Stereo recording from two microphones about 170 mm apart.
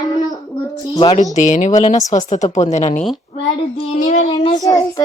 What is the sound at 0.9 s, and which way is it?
Speech, 35° left (ahead or behind).